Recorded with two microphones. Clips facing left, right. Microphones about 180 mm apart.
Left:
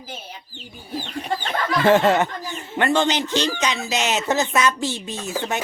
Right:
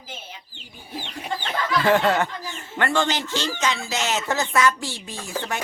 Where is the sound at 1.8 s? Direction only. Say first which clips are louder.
Left 4 dB; 20° left (ahead or behind).